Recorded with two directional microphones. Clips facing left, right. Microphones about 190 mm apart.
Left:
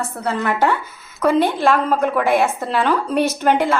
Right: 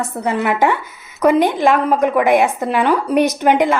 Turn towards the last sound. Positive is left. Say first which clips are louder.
# right 3 dB
turn(degrees=-15)  # may be behind; listen again after turning